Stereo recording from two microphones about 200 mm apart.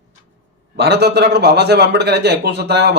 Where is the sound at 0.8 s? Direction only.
55° right (ahead or behind).